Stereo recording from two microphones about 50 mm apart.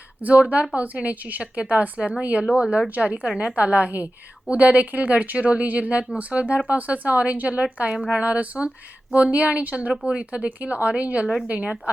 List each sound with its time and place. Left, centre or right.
0.2 s a woman's voice: right
9.9 s a woman's voice: centre